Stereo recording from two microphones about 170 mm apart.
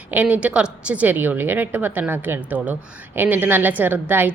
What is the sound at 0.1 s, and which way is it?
A woman's voice, 10° right (ahead or behind).